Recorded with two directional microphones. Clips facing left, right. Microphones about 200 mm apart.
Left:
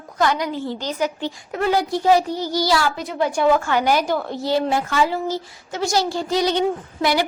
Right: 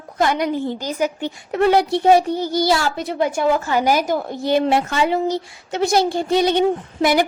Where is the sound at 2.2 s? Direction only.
55° right (ahead or behind).